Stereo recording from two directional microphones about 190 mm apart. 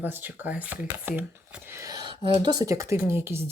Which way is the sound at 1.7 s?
15° right (ahead or behind).